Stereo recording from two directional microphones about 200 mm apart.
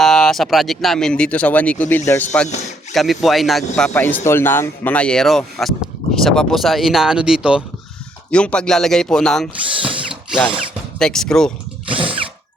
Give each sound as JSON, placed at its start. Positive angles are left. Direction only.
{"t": 0.0, "sound": "speech", "side_deg": 0}
{"t": 9.8, "sound": "mechanisms", "side_deg": -25}
{"t": 11.0, "sound": "speech", "side_deg": 5}
{"t": 11.9, "sound": "a sound", "side_deg": -25}